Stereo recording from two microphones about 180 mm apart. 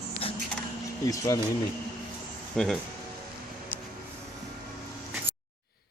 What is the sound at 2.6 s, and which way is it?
Speech, 5° left (ahead or behind).